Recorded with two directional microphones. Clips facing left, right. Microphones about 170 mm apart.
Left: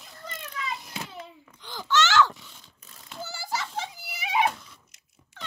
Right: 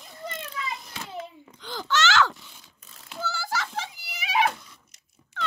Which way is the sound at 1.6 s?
90° right.